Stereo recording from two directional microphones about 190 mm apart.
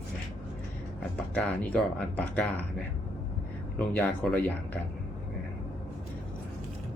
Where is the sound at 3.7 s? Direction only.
5° left (ahead or behind).